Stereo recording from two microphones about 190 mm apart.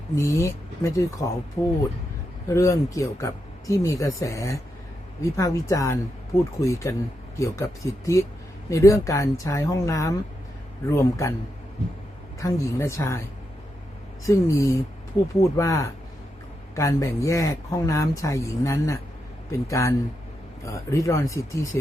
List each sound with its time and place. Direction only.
0.2 s speech: 15° left (ahead or behind)
12.4 s speech: 15° left (ahead or behind)
14.3 s speech: 15° left (ahead or behind)